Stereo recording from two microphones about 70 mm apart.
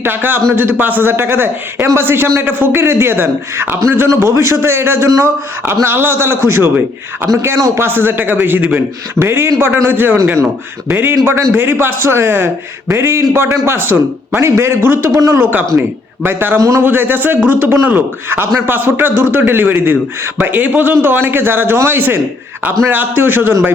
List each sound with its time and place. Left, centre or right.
0.0 s a man's voice: right
7.3 s a man's voice: right
7.8 s a man's voice: right
15.4 s a man's voice: right
16.6 s speech: right
16.8 s a man's voice: right